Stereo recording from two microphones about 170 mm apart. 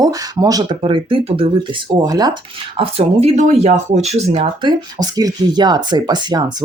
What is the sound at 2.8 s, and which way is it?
Speech, 35° right (ahead or behind).